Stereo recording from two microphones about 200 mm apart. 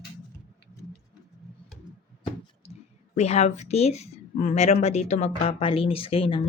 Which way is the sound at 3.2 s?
35° left (ahead or behind).